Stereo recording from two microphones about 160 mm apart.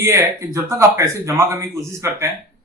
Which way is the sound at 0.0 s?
15° right (ahead or behind).